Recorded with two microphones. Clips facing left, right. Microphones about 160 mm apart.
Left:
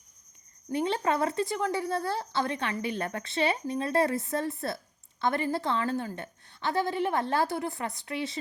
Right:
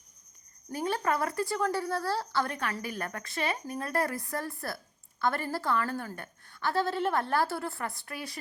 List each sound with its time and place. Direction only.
0.7 s a woman's voice: 25° left (ahead or behind)